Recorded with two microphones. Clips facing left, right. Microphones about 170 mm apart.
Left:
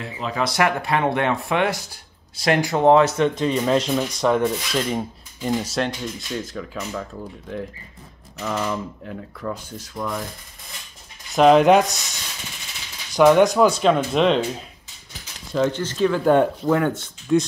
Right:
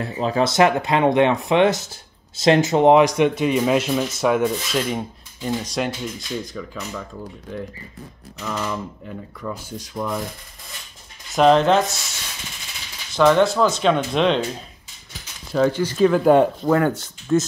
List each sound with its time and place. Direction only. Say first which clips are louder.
0.0 s speech: right 5 dB; 35° right (ahead or behind); by 7.1 s 5° left (ahead or behind)
8.4 s speech: left 2 dB; 5° left (ahead or behind)
9.7 s speech: right 2 dB; 10° right (ahead or behind)
11.3 s speech: left 2 dB; 5° left (ahead or behind)
13.1 s speech: left 2 dB; 15° left (ahead or behind)
15.5 s speech: right 3 dB; 5° right (ahead or behind)